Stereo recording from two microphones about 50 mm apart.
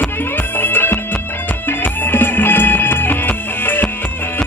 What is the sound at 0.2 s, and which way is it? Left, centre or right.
Music, left.